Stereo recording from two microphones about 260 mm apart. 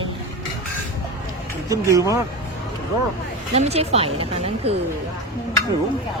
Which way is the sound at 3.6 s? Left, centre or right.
Right.